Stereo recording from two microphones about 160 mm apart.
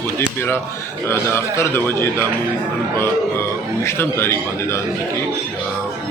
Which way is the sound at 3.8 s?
15° left (ahead or behind).